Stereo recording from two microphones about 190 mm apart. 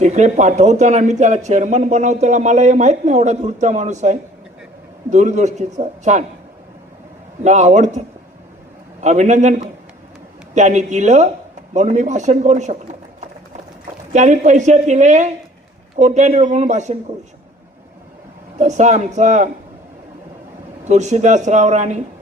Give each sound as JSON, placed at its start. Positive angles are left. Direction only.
{"t": 0.0, "sound": "speech", "side_deg": -40}
{"t": 7.4, "sound": "speech", "side_deg": -40}
{"t": 14.1, "sound": "speech", "side_deg": -40}
{"t": 18.6, "sound": "speech", "side_deg": -40}
{"t": 20.8, "sound": "speech", "side_deg": -40}